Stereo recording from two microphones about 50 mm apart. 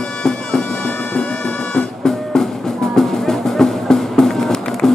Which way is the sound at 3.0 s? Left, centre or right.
Centre.